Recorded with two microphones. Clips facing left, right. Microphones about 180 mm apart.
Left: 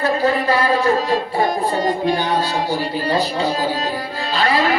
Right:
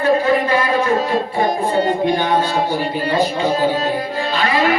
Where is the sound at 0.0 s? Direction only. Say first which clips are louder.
Right 3 dB; 35° left (ahead or behind).